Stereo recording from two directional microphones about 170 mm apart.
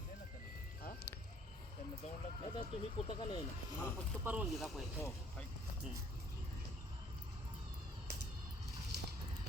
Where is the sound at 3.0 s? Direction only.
25° left (ahead or behind).